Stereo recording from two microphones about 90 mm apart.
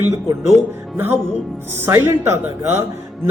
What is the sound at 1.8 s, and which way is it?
Speech, 30° right (ahead or behind).